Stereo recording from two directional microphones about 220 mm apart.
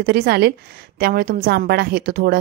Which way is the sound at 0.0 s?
45° right (ahead or behind).